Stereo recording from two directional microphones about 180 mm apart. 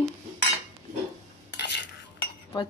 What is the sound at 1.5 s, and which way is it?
Cutlery, 70° left (ahead or behind).